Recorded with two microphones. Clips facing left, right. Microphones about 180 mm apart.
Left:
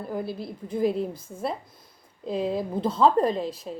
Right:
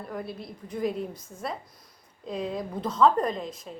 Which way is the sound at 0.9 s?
30° left (ahead or behind).